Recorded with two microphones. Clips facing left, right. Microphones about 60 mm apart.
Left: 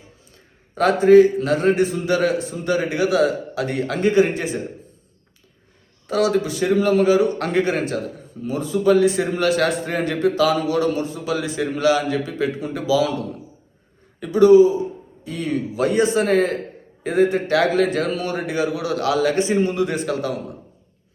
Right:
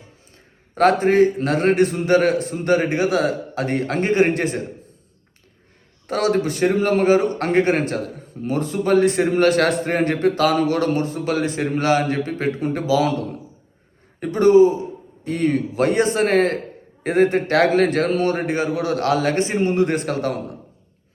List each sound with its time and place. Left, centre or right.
0.3 s a man's voice: right
1.7 s a man's voice: right
2.0 s a man's voice: right
6.1 s a man's voice: right